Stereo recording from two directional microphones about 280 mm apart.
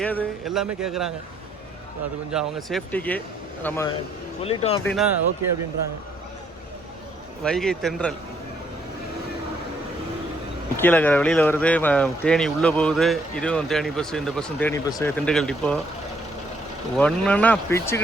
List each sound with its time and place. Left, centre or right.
0.0 s speech: centre
2.3 s speech: centre
4.4 s speech: left
4.8 s speech: centre
7.4 s speech: centre
10.8 s speech: centre
17.0 s speech: centre